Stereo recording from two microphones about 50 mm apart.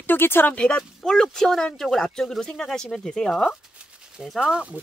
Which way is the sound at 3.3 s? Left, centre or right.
Centre.